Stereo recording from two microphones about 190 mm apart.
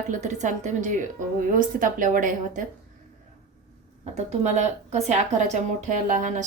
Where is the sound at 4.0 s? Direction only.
35° right (ahead or behind).